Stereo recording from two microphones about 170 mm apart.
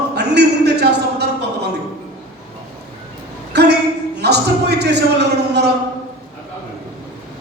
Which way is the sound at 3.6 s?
80° right.